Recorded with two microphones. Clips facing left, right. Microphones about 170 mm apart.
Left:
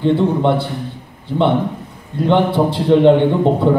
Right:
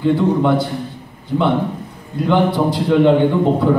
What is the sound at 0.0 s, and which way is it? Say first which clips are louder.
Speech: even; 30° left (ahead or behind).